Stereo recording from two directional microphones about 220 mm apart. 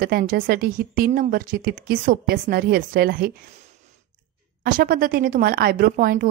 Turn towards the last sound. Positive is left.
turn(degrees=-40)  # may be behind; listen again after turning